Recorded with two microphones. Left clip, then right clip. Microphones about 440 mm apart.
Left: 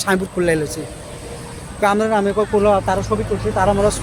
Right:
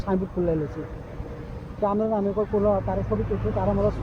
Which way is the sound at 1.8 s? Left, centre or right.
Right.